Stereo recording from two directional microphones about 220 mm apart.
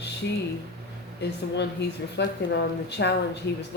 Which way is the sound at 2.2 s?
50° left (ahead or behind).